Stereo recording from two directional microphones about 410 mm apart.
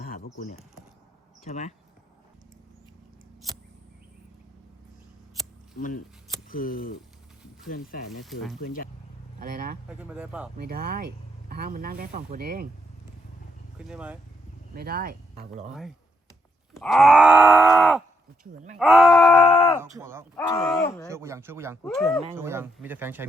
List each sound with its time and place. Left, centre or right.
0.0 s typing: left
1.5 s speech: centre
6.5 s speech: centre
8.2 s groan: centre
8.6 s speech: centre
9.4 s speech: centre
10.0 s groan: centre
10.6 s speech: right
13.7 s groan: centre
14.8 s speech: right
16.7 s groan: centre
20.0 s groan: centre
20.3 s speech: centre
21.1 s groan: centre